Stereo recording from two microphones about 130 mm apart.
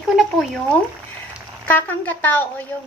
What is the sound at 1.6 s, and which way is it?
Speech, 15° left (ahead or behind).